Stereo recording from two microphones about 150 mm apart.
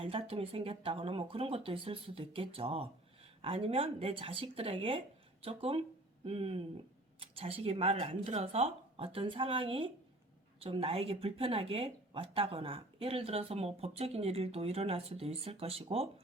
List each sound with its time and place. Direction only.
0.0 s speech: 40° right (ahead or behind)